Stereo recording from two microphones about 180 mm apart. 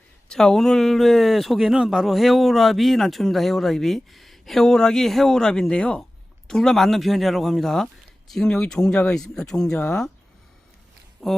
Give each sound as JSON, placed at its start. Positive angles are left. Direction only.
{"t": 0.3, "sound": "speech", "side_deg": 5}
{"t": 11.2, "sound": "speech", "side_deg": 5}